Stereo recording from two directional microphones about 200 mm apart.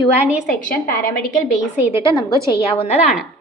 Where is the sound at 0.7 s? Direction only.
45° left (ahead or behind).